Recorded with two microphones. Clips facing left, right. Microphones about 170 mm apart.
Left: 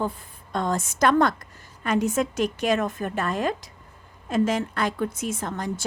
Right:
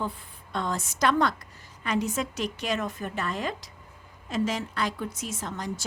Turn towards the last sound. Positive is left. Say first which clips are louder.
# left 4 dB
turn(degrees=55)  # may be behind; listen again after turning